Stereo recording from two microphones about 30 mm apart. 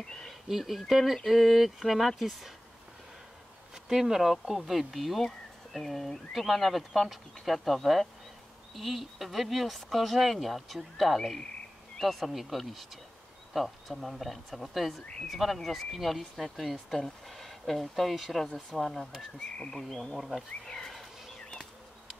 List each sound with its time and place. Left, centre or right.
0.0 s a sound: centre
0.5 s speech: centre
3.7 s speech: centre
5.8 s speech: centre
18.7 s speech: centre
20.6 s speech: centre